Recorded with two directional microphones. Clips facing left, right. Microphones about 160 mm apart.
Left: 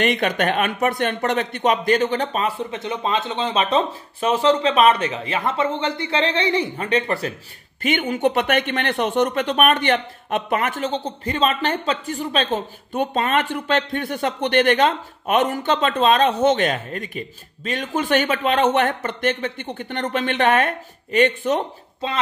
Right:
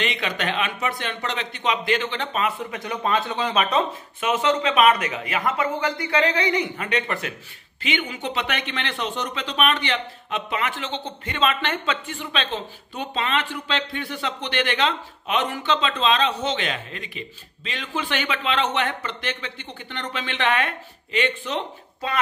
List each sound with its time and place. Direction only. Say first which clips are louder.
0.0 s speech: left 7 dB; 50° left (ahead or behind); by 7.3 s 35° left (ahead or behind)
7.8 s speech: left 8 dB; 50° left (ahead or behind)